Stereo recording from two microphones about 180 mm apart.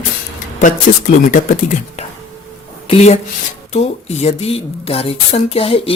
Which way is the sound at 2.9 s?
35° left (ahead or behind).